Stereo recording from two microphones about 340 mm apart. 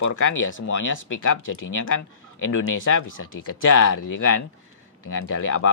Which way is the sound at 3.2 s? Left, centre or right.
Left.